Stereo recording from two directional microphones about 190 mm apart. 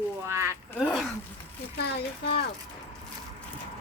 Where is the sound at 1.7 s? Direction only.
55° left (ahead or behind).